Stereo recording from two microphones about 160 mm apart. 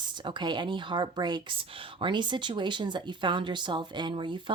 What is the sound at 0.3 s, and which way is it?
A woman's voice, 30° right (ahead or behind).